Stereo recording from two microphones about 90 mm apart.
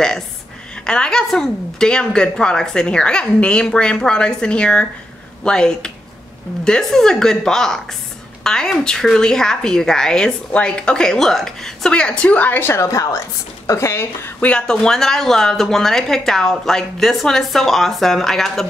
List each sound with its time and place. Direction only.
0.8 s a woman's voice: 10° left (ahead or behind)
12.8 s speech: 40° left (ahead or behind)
14.4 s speech: 10° left (ahead or behind)